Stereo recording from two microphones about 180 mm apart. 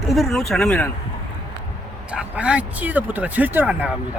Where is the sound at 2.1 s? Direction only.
5° right (ahead or behind).